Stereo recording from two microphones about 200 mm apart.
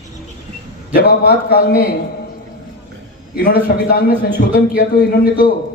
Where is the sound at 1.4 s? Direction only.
50° left (ahead or behind).